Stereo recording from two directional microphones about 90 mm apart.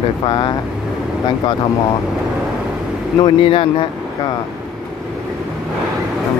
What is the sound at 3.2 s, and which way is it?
Speech, 80° left.